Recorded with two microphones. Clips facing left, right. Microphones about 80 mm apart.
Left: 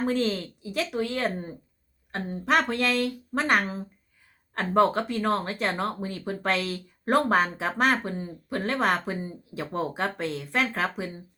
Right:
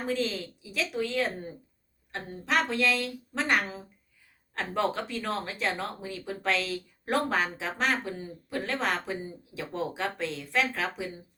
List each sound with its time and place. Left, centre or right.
0.1 s speech: left
9.2 s speech: left